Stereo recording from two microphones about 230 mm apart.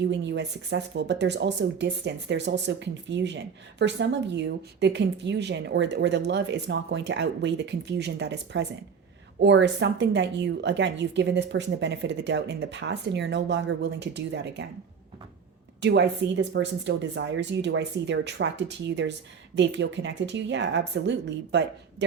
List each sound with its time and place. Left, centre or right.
0.0 s speech: right
15.8 s speech: right